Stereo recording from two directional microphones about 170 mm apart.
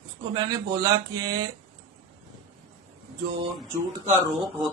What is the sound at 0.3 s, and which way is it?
Speech, 25° right (ahead or behind).